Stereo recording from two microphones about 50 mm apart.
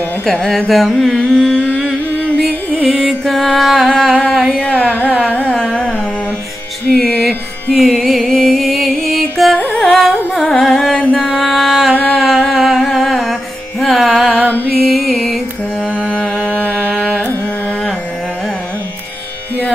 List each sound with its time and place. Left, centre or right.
0.5 s carnatic music: centre
1.1 s carnatic music: centre
2.7 s music: centre
5.6 s carnatic music: centre
6.9 s music: centre
16.2 s music: left
16.7 s carnatic music: right